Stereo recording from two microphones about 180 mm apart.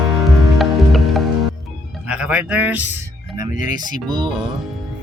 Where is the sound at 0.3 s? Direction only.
Centre (ahead or behind).